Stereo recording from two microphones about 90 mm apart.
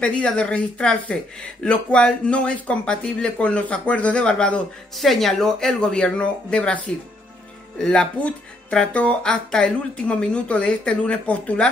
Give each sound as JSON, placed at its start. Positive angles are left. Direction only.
{"t": 0.0, "sound": "speech", "side_deg": 10}
{"t": 7.8, "sound": "speech", "side_deg": 10}